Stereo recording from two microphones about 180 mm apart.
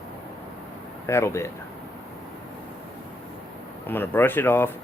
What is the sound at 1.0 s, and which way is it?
Speech, 15° left (ahead or behind).